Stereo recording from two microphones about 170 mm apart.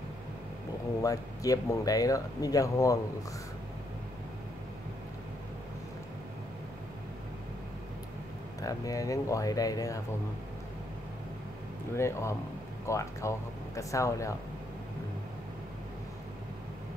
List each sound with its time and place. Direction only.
1.0 s speech: 20° left (ahead or behind)
8.5 s speech: 20° left (ahead or behind)
11.9 s speech: 15° left (ahead or behind)